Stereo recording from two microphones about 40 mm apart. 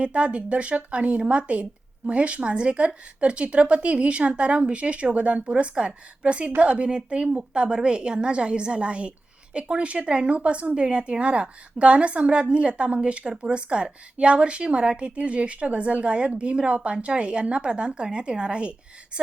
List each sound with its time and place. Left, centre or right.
0.0 s a woman's voice: right